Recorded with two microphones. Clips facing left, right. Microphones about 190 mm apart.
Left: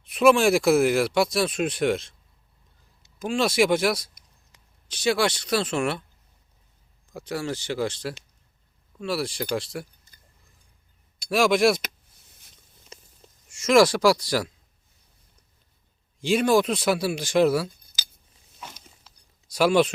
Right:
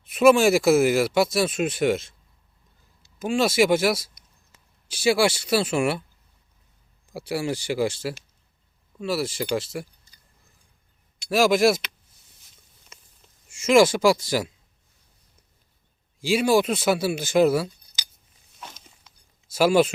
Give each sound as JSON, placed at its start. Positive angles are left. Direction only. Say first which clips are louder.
{"t": 0.0, "sound": "speech", "louder": "right 2 dB", "side_deg": -5}
{"t": 3.2, "sound": "speech", "louder": "right 2 dB", "side_deg": -5}
{"t": 7.1, "sound": "speech", "louder": "right 3 dB", "side_deg": -10}
{"t": 10.1, "sound": "a sound", "louder": "left 1 dB", "side_deg": 50}
{"t": 11.3, "sound": "speech", "louder": "right 1 dB", "side_deg": 0}
{"t": 13.5, "sound": "speech", "louder": "right 1 dB", "side_deg": -5}
{"t": 16.2, "sound": "speech", "louder": "even", "side_deg": -5}
{"t": 18.6, "sound": "a sound", "louder": "even", "side_deg": 10}
{"t": 19.5, "sound": "speech", "louder": "right 1 dB", "side_deg": -5}